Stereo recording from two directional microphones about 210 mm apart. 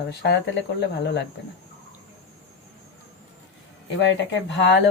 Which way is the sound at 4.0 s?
60° left (ahead or behind).